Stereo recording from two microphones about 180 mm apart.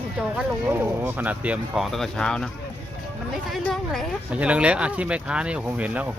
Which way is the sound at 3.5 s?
Centre (ahead or behind).